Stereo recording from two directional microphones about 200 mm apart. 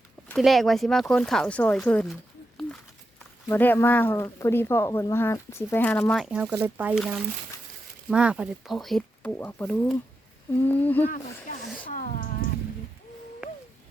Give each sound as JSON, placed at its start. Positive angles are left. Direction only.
{"t": 0.3, "sound": "speech", "side_deg": 0}
{"t": 3.5, "sound": "speech", "side_deg": 10}
{"t": 11.9, "sound": "a sound", "side_deg": 40}